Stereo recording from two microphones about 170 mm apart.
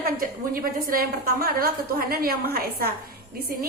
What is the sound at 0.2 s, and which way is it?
A woman's voice, 60° right (ahead or behind).